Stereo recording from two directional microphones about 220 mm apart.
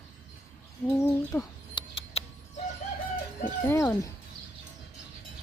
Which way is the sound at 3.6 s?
10° left (ahead or behind).